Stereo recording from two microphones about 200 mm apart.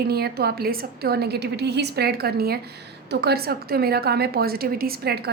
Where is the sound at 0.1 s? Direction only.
50° right (ahead or behind).